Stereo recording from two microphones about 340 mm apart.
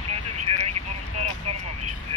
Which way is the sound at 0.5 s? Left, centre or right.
Centre.